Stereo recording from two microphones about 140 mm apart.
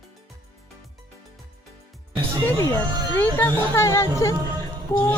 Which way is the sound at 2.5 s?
20° left (ahead or behind).